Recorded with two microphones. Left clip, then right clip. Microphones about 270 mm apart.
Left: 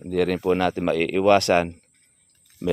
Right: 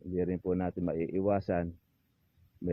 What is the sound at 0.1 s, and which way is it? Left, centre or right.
Speech, left.